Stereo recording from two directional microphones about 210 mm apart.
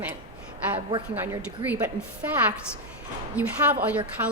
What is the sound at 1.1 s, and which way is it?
Speech, 10° right (ahead or behind).